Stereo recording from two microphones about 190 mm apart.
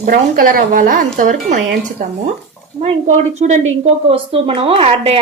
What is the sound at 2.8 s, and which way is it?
A woman's voice, 35° right (ahead or behind).